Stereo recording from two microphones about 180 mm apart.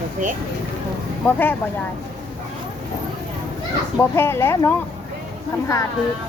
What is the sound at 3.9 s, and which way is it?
Speech, 15° left (ahead or behind).